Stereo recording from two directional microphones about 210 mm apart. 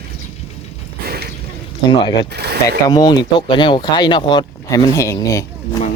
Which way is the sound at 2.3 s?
50° right (ahead or behind).